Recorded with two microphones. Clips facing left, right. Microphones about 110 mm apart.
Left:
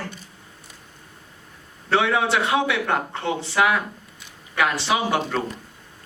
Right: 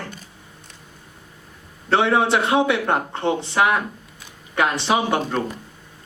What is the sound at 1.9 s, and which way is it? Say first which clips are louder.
Speech: right 3 dB; 30° right (ahead or behind).